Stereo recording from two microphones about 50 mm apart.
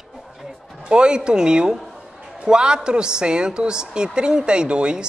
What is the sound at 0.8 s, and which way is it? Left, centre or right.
A woman's voice, centre.